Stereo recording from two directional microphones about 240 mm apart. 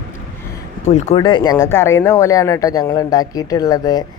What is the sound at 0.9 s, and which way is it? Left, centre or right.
Speech, left.